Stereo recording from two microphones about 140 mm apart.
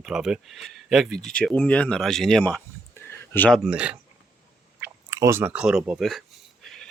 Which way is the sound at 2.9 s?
15° left (ahead or behind).